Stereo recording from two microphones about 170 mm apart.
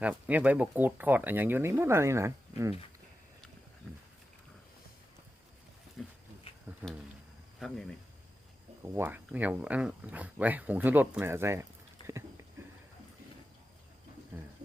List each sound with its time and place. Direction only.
0.0 s speech: 10° right (ahead or behind)
6.0 s a sound: centre (ahead or behind)
6.8 s speech: 10° right (ahead or behind)
8.8 s speech: 10° right (ahead or behind)
12.0 s a sound: 25° left (ahead or behind)
14.3 s water: 15° right (ahead or behind)